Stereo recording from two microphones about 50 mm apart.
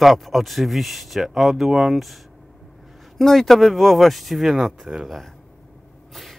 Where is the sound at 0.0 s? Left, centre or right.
Centre.